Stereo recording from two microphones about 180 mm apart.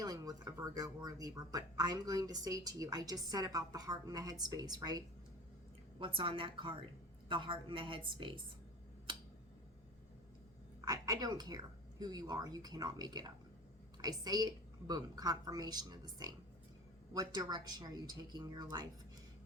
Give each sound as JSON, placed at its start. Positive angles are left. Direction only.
{"t": 0.0, "sound": "speech", "side_deg": -20}
{"t": 10.8, "sound": "speech", "side_deg": -20}